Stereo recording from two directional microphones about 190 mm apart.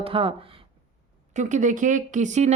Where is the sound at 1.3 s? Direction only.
40° right (ahead or behind).